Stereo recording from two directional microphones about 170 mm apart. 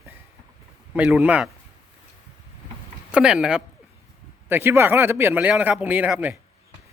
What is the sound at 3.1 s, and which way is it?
Speech, 5° right (ahead or behind).